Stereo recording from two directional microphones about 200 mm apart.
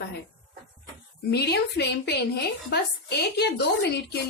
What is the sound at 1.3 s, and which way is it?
A woman's voice, 55° left (ahead or behind).